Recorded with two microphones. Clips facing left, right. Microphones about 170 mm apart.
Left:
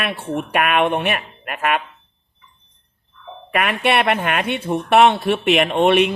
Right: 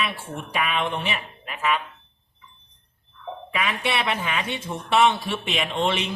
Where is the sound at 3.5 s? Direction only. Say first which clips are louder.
Left 8 dB; 60° left (ahead or behind).